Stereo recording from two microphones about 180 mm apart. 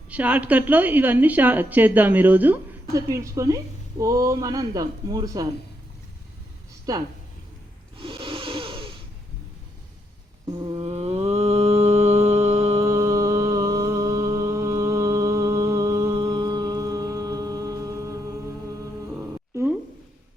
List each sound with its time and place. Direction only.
0.1 s a woman's voice: 10° right (ahead or behind)
6.9 s speech: 20° right (ahead or behind)
7.9 s a sound: 30° right (ahead or behind)
10.6 s a sound: 30° right (ahead or behind)
11.3 s mantra: 35° right (ahead or behind)
12.8 s music: 15° right (ahead or behind)